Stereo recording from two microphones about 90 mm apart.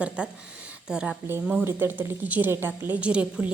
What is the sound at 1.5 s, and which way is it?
A woman's voice, 25° right (ahead or behind).